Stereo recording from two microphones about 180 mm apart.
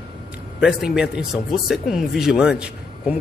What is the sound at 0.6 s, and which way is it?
A man's voice, centre (ahead or behind).